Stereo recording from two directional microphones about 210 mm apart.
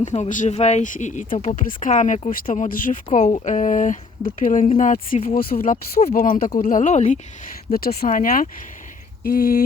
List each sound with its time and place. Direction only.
0.0 s speech: 35° left (ahead or behind)